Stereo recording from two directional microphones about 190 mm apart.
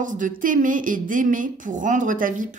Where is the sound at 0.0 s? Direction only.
45° right (ahead or behind).